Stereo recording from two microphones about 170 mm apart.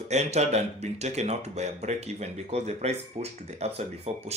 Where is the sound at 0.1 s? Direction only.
40° right (ahead or behind).